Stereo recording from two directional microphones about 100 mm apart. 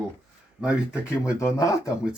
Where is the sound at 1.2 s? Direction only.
30° left (ahead or behind).